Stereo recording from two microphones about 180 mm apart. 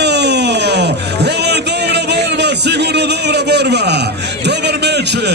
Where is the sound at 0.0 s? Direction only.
70° right (ahead or behind).